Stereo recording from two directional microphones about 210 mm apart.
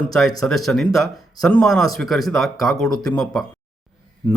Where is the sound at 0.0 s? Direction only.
Centre (ahead or behind).